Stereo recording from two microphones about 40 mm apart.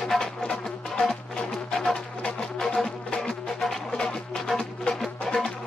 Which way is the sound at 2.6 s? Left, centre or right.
Centre.